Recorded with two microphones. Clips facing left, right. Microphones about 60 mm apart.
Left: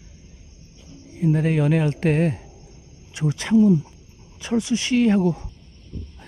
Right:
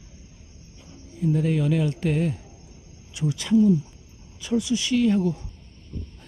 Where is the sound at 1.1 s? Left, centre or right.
Left.